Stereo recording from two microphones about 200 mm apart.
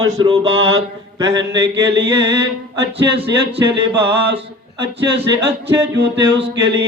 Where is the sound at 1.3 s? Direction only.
65° right (ahead or behind).